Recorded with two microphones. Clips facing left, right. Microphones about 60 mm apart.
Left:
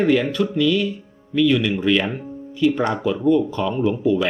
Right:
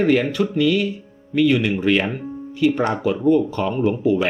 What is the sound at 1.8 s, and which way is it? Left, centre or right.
Speech, right.